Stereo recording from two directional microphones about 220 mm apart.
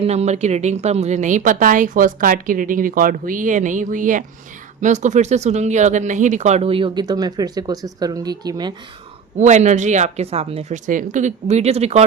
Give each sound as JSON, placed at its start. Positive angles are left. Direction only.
{"t": 0.0, "sound": "a woman's voice", "side_deg": -30}
{"t": 9.4, "sound": "a woman's voice", "side_deg": -30}